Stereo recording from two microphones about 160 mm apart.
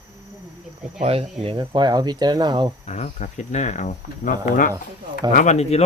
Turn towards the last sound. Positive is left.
turn(degrees=40)  # may be behind; listen again after turning